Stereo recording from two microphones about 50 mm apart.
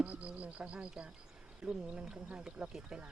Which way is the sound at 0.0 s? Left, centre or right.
Right.